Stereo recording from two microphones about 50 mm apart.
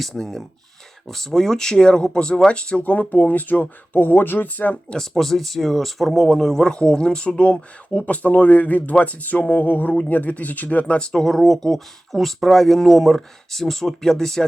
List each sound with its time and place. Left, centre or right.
0.1 s speech: centre; by 4.8 s left
4.9 s speech: centre
11.2 s speech: centre